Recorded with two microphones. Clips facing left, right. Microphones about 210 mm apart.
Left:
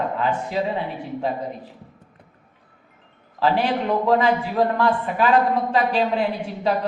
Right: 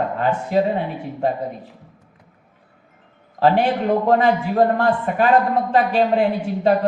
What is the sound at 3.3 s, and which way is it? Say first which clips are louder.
A man's voice: right 4 dB; 50° right (ahead or behind).